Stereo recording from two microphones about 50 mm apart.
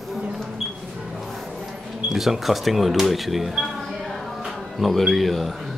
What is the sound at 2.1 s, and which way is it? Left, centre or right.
Speech, centre.